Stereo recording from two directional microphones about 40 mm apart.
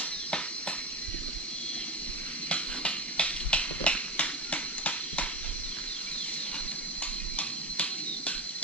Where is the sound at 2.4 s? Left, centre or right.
Left.